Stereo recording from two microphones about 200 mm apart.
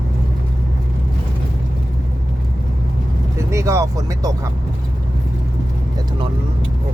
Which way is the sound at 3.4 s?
15° right (ahead or behind).